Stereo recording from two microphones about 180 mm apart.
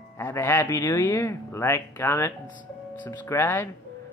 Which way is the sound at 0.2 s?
15° left (ahead or behind).